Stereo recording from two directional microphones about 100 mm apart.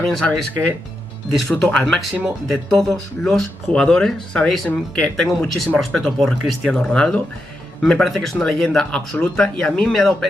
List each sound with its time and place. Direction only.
0.0 s speech: 5° left (ahead or behind)